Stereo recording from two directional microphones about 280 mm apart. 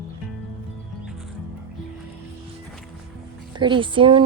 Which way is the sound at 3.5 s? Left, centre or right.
Centre.